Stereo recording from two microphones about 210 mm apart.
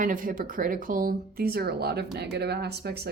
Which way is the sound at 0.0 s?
40° right (ahead or behind).